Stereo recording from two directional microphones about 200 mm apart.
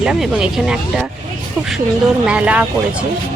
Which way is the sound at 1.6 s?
10° right (ahead or behind).